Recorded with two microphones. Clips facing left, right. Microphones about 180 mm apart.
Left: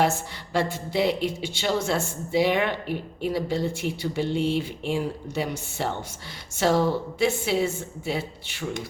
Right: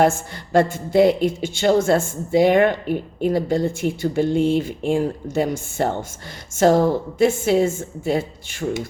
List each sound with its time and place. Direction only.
0.0 s a woman's voice: 50° right (ahead or behind)